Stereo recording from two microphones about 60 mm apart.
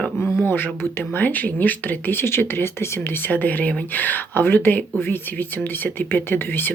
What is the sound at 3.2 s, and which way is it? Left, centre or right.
Speech, left.